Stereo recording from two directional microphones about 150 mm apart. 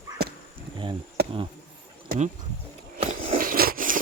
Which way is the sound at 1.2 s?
90° right.